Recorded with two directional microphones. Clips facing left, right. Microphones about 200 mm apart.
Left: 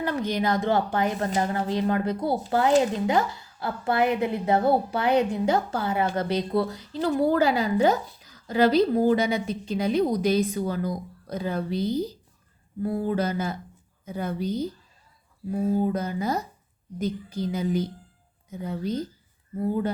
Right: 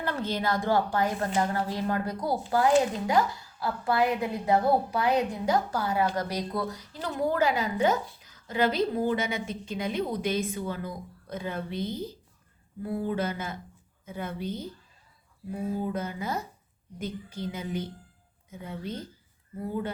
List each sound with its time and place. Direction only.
0.0 s a woman's voice: 15° left (ahead or behind); by 14.7 s 40° left (ahead or behind)
15.7 s a woman's voice: 40° left (ahead or behind)